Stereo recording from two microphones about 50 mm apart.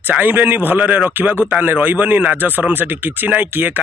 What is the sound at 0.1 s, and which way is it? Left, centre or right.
Speech, right.